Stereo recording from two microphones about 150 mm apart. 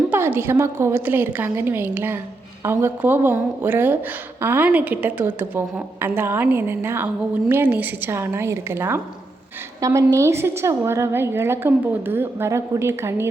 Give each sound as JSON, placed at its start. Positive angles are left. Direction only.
{"t": 0.1, "sound": "a woman's voice", "side_deg": -15}